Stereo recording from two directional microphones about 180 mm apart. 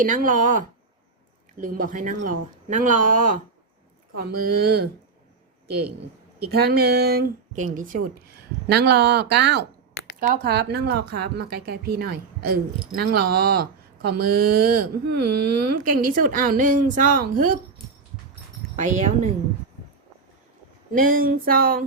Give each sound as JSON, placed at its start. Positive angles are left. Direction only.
{"t": 0.0, "sound": "speech", "side_deg": -50}
{"t": 1.6, "sound": "speech", "side_deg": -50}
{"t": 4.2, "sound": "speech", "side_deg": -60}
{"t": 6.5, "sound": "speech", "side_deg": -60}
{"t": 8.6, "sound": "speech", "side_deg": -65}
{"t": 18.8, "sound": "speech", "side_deg": -40}
{"t": 20.9, "sound": "speech", "side_deg": -50}